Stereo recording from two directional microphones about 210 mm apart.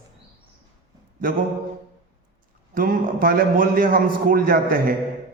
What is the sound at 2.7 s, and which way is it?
A man's voice, 45° right (ahead or behind).